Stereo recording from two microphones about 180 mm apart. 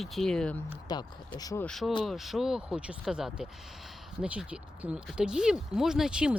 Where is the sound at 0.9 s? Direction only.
25° left (ahead or behind).